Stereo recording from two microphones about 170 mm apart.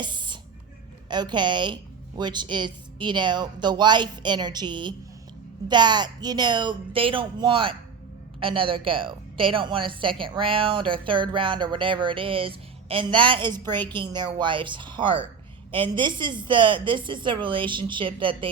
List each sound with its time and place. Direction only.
0.0 s music: 25° right (ahead or behind)
1.0 s a woman's voice: 25° right (ahead or behind)